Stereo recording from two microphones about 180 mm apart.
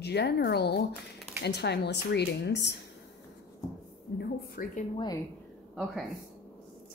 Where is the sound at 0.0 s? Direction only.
65° left (ahead or behind).